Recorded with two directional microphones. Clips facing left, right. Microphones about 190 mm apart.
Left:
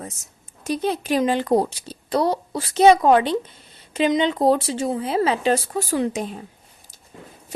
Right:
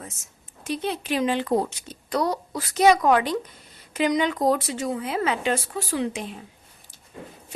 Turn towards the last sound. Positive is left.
turn(degrees=40)  # may be behind; listen again after turning